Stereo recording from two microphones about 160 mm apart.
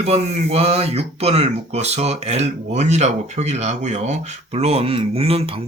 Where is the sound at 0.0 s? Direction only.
40° right (ahead or behind).